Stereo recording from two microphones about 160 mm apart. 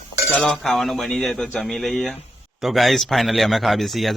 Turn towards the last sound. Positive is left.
turn(degrees=0)  # may be behind; listen again after turning